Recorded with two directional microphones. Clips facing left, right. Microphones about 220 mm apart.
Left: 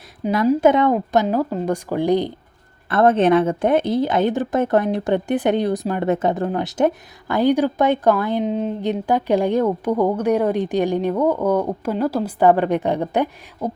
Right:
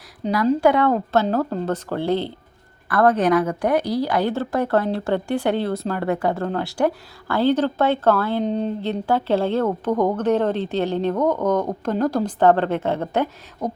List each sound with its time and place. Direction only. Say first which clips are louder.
0.2 s a woman's voice: left 2 dB; 10° left (ahead or behind)
0.6 s a woman's voice: left 2 dB; 20° left (ahead or behind)
8.4 s speech: left 1 dB; 5° left (ahead or behind)
8.8 s a woman's voice: left 2 dB; 15° left (ahead or behind)